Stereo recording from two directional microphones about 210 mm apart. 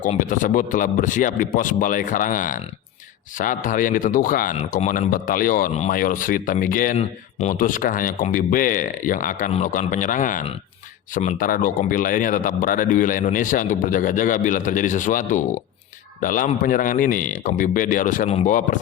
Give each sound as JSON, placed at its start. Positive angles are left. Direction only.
{"t": 0.0, "sound": "speech", "side_deg": 40}